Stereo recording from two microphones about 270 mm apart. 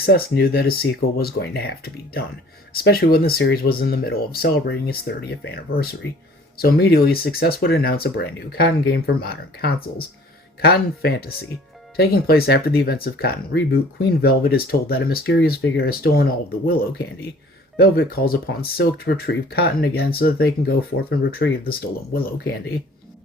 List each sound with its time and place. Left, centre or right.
0.0 s speech: left
17.7 s speech: left